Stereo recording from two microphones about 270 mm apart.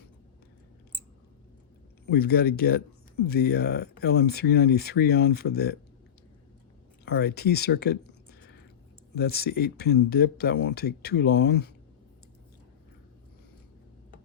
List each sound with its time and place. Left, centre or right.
2.0 s speech: left
7.0 s speech: left